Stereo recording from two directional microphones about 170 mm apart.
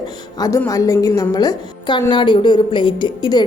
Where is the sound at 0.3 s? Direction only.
20° left (ahead or behind).